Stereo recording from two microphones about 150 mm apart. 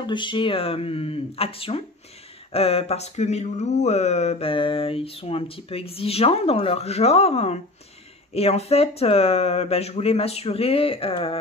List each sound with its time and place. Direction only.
0.0 s speech: 30° left (ahead or behind)